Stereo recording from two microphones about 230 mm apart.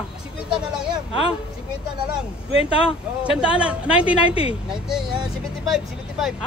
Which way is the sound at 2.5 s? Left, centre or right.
Left.